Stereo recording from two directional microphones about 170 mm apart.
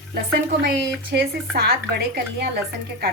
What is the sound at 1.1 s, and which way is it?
Speech, 70° right (ahead or behind).